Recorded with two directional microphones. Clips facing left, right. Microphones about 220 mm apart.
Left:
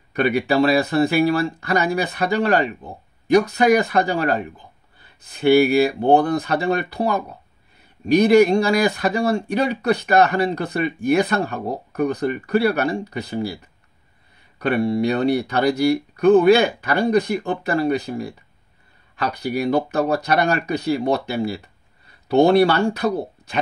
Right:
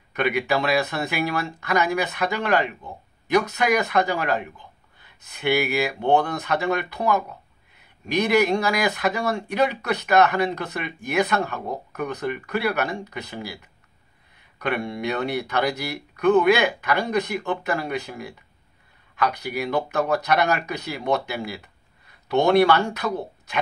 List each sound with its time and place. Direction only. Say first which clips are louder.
0.1 s speech: left 4 dB; 35° left (ahead or behind)
14.6 s speech: left 7 dB; 30° left (ahead or behind)